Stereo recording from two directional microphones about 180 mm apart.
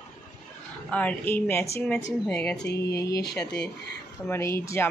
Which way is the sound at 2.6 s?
65° left (ahead or behind).